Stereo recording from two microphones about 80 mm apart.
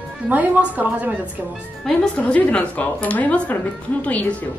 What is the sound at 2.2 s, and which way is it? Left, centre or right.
Speech, centre.